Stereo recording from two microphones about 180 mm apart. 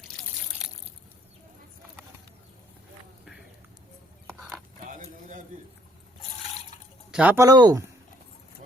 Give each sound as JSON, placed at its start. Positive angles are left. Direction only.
{"t": 4.9, "sound": "a sound", "side_deg": -45}
{"t": 7.1, "sound": "speech", "side_deg": -10}
{"t": 7.4, "sound": "speech", "side_deg": -20}